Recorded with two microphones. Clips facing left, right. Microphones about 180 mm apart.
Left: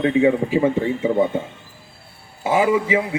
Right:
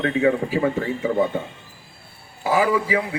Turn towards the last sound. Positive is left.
turn(degrees=25)  # may be behind; listen again after turning